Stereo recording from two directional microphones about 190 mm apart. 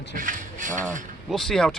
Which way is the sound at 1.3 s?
Centre (ahead or behind).